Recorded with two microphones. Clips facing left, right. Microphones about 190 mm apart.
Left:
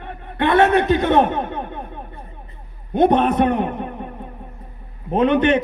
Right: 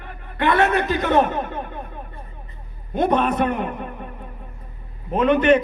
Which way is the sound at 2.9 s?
20° left (ahead or behind).